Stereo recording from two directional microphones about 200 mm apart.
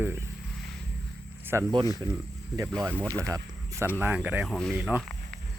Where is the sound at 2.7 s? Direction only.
5° left (ahead or behind).